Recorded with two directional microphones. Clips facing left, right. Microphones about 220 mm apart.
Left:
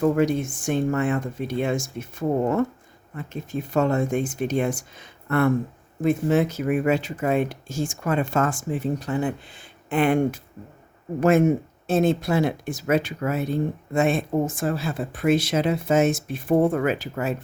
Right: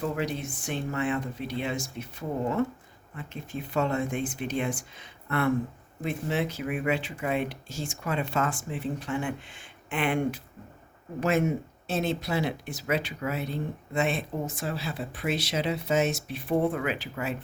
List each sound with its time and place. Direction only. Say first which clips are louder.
0.0 s speech: left 10 dB; 50° left (ahead or behind)